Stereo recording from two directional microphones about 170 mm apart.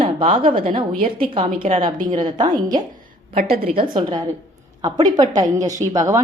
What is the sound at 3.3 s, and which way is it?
Speech, 60° right (ahead or behind).